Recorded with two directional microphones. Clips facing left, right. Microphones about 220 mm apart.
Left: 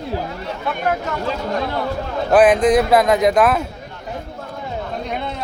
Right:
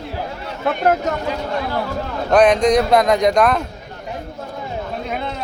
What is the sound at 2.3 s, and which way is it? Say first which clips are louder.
Speech: left 1 dB; 5° left (ahead or behind).